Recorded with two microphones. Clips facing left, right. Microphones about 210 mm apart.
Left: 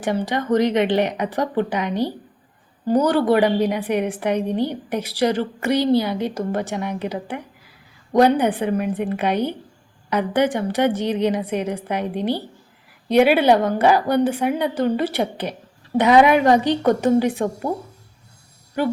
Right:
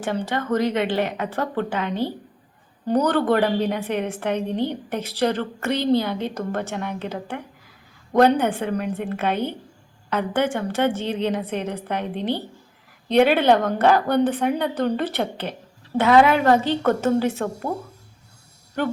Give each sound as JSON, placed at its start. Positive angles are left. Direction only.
{"t": 0.3, "sound": "a woman's voice", "side_deg": 15}